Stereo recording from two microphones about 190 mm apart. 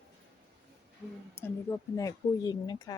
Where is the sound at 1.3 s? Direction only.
15° left (ahead or behind).